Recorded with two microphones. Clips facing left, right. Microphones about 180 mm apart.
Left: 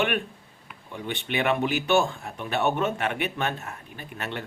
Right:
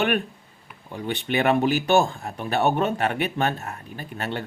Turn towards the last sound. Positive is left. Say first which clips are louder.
# right 4 dB
turn(degrees=-35)  # may be behind; listen again after turning